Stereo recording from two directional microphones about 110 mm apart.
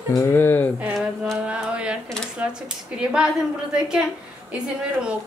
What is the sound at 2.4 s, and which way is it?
Speech, 15° right (ahead or behind).